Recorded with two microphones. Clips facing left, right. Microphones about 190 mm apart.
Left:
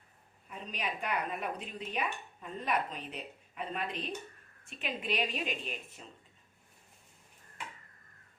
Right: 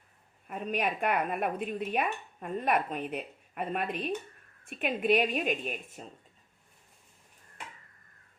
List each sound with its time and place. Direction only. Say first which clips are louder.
0.4 s a woman's voice: right 8 dB; 55° right (ahead or behind)